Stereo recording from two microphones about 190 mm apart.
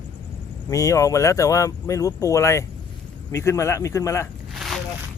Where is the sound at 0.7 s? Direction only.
15° left (ahead or behind).